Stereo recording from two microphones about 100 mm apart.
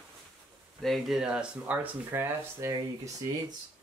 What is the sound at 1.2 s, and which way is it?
Speech, 10° right (ahead or behind).